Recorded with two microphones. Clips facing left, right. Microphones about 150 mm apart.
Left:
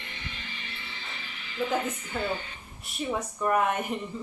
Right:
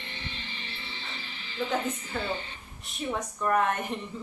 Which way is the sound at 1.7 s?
Centre (ahead or behind).